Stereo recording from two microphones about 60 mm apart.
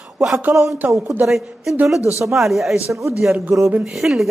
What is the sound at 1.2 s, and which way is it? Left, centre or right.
Speech, centre.